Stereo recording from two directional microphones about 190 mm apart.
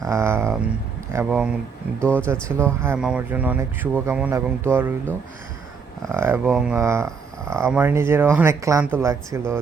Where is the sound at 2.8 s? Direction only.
10° right (ahead or behind).